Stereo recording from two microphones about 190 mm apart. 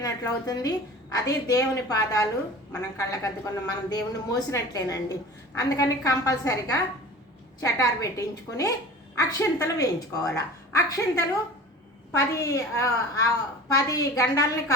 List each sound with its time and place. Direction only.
0.0 s a woman's voice: 20° left (ahead or behind)
12.4 s a woman's voice: 15° left (ahead or behind)